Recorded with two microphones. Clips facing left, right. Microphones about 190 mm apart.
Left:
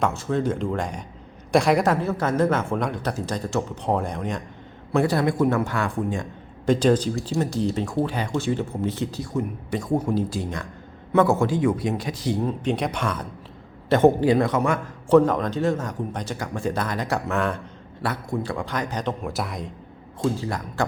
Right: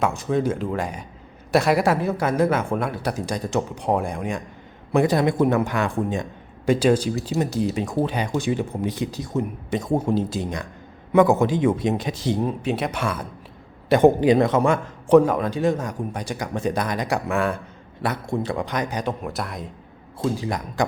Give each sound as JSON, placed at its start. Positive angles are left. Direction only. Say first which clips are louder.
{"t": 0.0, "sound": "speech", "louder": "right 1 dB", "side_deg": -15}
{"t": 6.7, "sound": "speech", "louder": "right 1 dB", "side_deg": -10}
{"t": 8.0, "sound": "speech", "louder": "right 1 dB", "side_deg": -15}
{"t": 12.6, "sound": "speech", "louder": "even", "side_deg": -5}
{"t": 15.1, "sound": "speech", "louder": "right 2 dB", "side_deg": -10}
{"t": 18.0, "sound": "speech", "louder": "right 2 dB", "side_deg": -20}
{"t": 19.3, "sound": "speech", "louder": "left 1 dB", "side_deg": 0}
{"t": 20.3, "sound": "speech", "louder": "right 2 dB", "side_deg": -15}